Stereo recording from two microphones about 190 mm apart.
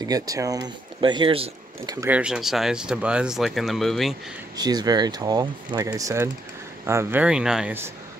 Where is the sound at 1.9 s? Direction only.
10° right (ahead or behind).